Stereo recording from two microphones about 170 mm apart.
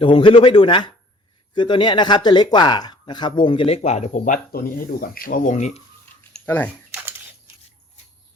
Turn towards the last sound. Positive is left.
turn(degrees=10)  # may be behind; listen again after turning